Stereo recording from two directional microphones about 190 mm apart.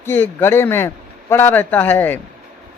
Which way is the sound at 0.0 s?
10° left (ahead or behind).